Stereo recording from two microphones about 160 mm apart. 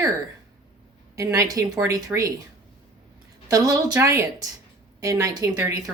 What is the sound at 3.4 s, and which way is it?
Speech, 25° right (ahead or behind).